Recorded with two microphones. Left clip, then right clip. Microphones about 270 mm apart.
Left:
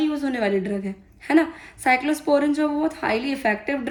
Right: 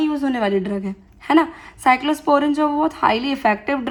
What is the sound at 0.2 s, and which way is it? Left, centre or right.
A woman's voice, centre.